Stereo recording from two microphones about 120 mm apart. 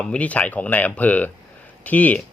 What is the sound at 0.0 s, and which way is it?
Speech, 10° left (ahead or behind).